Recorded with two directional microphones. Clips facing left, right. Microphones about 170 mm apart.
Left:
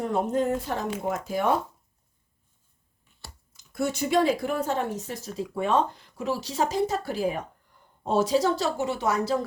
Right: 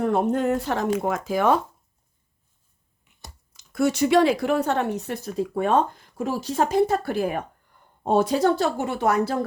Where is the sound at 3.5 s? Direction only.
85° right.